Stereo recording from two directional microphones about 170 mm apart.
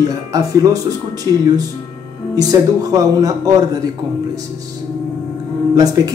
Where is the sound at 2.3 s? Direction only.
20° right (ahead or behind).